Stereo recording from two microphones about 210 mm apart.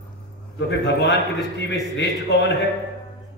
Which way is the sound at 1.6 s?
55° left (ahead or behind).